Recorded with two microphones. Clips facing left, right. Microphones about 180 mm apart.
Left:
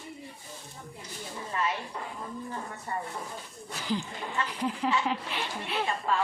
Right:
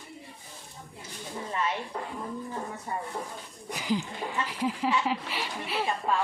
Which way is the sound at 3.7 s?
10° right (ahead or behind).